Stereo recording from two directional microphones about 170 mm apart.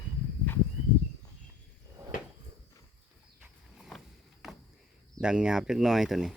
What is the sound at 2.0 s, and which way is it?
Cupboard open or close, 15° right (ahead or behind).